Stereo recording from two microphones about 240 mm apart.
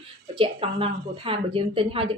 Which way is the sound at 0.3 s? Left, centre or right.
Right.